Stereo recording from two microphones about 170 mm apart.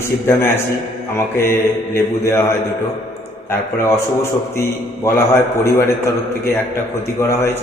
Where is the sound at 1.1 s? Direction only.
15° left (ahead or behind).